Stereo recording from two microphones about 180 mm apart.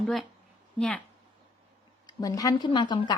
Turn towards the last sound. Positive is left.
turn(degrees=25)  # may be behind; listen again after turning